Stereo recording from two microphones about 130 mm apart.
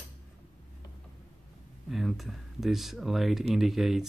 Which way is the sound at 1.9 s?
Centre (ahead or behind).